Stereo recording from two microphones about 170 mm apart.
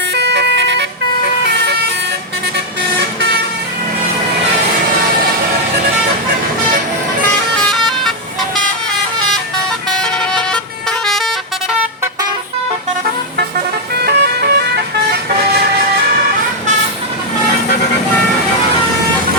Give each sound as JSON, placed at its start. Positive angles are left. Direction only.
{"t": 0.1, "sound": "emergency vehicle", "side_deg": -90}
{"t": 7.7, "sound": "vehicle", "side_deg": 0}
{"t": 10.0, "sound": "vehicle", "side_deg": 5}
{"t": 14.0, "sound": "vehicle", "side_deg": -80}